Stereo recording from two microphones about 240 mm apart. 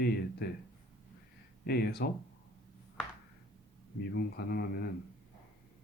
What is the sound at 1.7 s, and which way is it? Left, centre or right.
Speech, left.